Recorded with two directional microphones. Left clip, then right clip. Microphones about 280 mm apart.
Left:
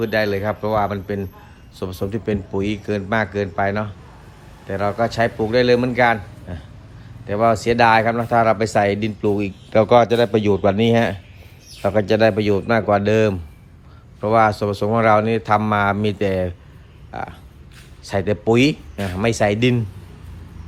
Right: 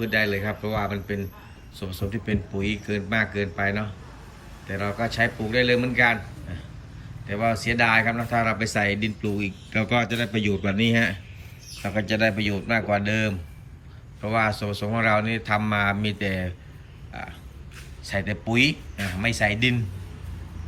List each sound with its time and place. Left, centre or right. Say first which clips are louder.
0.0 s speech: left 5 dB; centre
18.0 s speech: left 9 dB; centre